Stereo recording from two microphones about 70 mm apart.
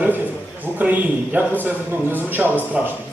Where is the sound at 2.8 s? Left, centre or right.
Centre.